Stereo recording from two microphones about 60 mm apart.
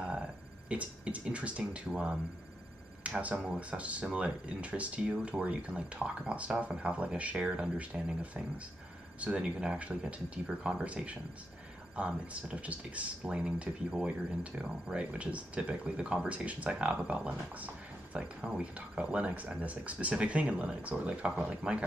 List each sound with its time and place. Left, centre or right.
0.7 s speech: right